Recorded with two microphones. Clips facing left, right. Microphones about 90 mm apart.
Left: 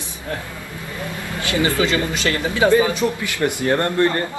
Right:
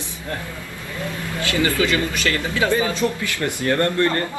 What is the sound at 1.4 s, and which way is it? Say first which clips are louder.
Speech: left 1 dB; 20° left (ahead or behind).